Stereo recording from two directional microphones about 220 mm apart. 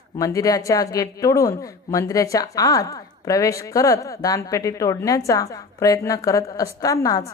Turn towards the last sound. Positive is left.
turn(degrees=15)  # may be behind; listen again after turning